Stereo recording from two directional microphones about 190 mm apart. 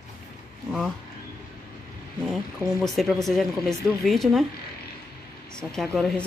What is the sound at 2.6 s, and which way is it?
Speech, 15° right (ahead or behind).